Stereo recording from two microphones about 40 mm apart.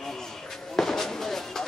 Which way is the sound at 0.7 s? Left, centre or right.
Centre.